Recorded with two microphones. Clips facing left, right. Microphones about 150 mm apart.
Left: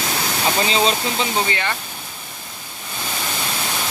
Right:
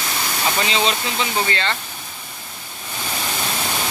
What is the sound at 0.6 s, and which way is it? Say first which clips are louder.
Speech: left 2 dB; 35° left (ahead or behind).